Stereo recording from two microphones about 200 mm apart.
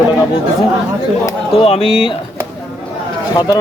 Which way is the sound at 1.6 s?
30° left (ahead or behind).